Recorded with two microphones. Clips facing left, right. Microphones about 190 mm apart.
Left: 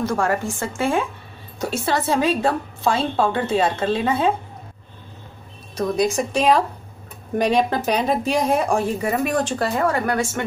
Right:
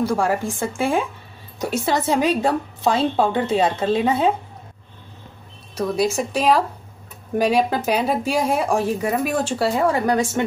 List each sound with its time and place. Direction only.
0.0 s a woman's voice: 10° right (ahead or behind)
5.8 s speech: 5° right (ahead or behind)